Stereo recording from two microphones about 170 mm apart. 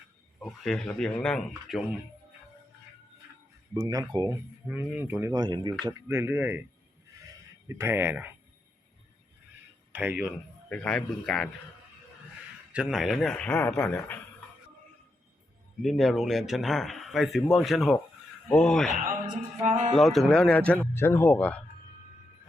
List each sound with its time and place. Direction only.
0.3 s speech: 5° left (ahead or behind)
3.8 s speech: 20° right (ahead or behind)
4.7 s speech: 10° right (ahead or behind)
7.7 s speech: 15° right (ahead or behind)
9.9 s speech: 10° right (ahead or behind)
10.2 s speech: 5° left (ahead or behind)
12.7 s speech: 5° right (ahead or behind)
15.8 s speech: centre (ahead or behind)
18.9 s speech: 50° right (ahead or behind)
20.0 s speech: centre (ahead or behind)